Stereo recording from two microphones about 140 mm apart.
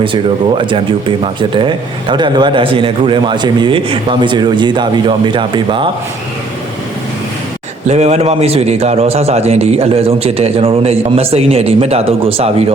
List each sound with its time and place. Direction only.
0.0 s speech: 35° right (ahead or behind)
7.9 s a man's voice: 50° right (ahead or behind)